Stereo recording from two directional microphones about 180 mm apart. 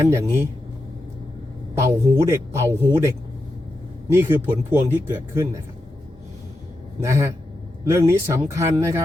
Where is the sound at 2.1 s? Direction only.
15° right (ahead or behind).